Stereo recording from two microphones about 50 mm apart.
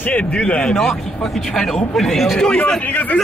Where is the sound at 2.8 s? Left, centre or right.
Left.